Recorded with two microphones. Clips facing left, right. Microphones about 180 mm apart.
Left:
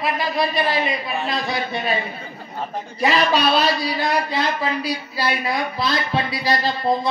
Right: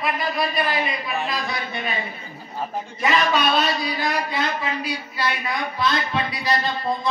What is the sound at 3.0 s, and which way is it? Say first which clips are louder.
A man's voice: left 2 dB; 30° left (ahead or behind).